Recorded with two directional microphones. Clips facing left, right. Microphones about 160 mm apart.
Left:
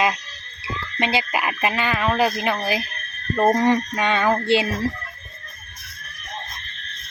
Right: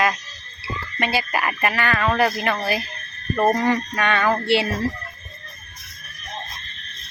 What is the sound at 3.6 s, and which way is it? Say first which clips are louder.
Speech: left 2 dB; 20° left (ahead or behind).